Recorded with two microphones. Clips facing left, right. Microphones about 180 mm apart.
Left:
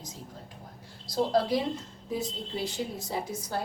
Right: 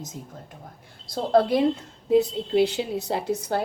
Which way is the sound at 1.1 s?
60° right (ahead or behind).